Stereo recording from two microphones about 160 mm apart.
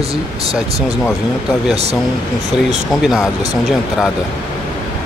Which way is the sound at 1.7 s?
40° right (ahead or behind).